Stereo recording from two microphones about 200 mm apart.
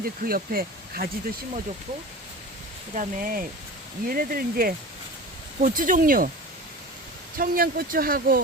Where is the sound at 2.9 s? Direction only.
45° right (ahead or behind).